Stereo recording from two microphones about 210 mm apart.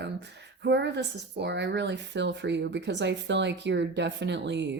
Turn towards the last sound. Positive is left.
turn(degrees=-55)  # may be behind; listen again after turning